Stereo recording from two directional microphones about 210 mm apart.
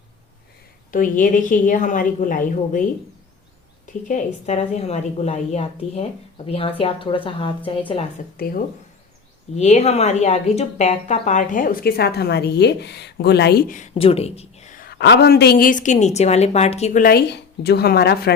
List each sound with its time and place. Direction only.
0.9 s a woman's voice: 40° left (ahead or behind)
3.8 s a woman's voice: 35° left (ahead or behind)
8.4 s speech: 45° left (ahead or behind)
9.6 s a woman's voice: 30° left (ahead or behind)
13.9 s a woman's voice: 25° left (ahead or behind); by 18.3 s 50° left (ahead or behind)